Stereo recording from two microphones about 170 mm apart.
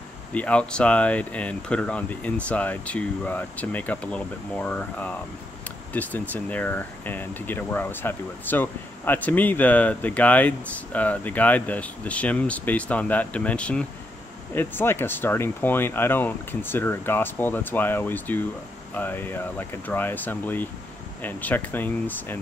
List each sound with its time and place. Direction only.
0.3 s speech: 5° left (ahead or behind)